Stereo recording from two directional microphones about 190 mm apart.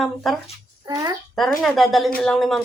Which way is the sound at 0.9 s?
20° right (ahead or behind).